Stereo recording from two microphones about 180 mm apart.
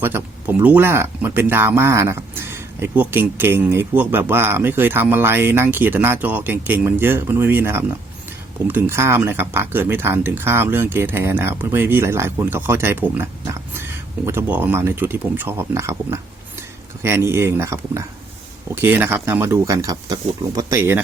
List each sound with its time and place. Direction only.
0.0 s speech: 10° right (ahead or behind)